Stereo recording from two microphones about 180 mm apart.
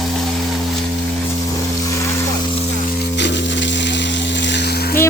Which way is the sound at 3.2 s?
80° left.